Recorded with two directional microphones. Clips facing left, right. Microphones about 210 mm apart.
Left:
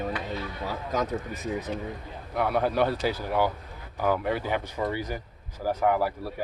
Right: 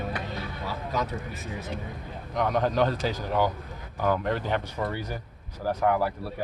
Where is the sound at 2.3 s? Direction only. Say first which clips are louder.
Even; 10° left (ahead or behind).